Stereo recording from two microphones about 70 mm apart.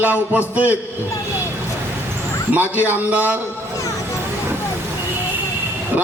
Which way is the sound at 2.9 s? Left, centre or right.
Right.